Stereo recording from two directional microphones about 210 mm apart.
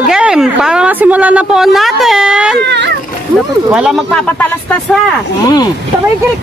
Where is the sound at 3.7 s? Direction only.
5° right (ahead or behind).